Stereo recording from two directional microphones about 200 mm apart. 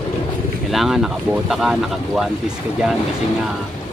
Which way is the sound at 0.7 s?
Centre (ahead or behind).